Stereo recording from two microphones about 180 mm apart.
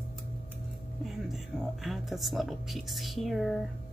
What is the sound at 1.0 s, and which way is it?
Speech, centre (ahead or behind).